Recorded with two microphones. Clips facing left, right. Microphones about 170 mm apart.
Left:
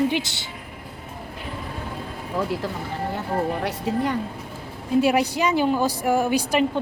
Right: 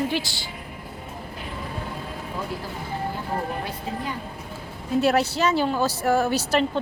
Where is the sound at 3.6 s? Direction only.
75° left (ahead or behind).